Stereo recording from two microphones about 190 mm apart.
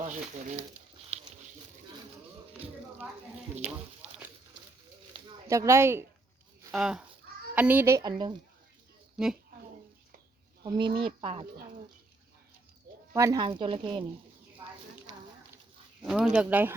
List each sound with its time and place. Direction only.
0.0 s speech: 40° right (ahead or behind)
5.5 s speech: 15° right (ahead or behind)
9.1 s a woman's voice: 5° right (ahead or behind)
10.6 s speech: 25° right (ahead or behind)
13.1 s speech: 20° right (ahead or behind)
14.6 s a sound: 20° right (ahead or behind)
16.0 s speech: 5° right (ahead or behind)